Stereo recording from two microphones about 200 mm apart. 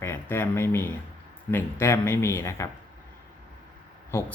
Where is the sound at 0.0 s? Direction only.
10° left (ahead or behind).